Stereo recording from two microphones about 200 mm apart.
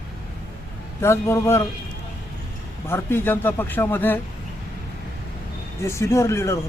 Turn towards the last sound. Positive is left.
turn(degrees=15)  # may be behind; listen again after turning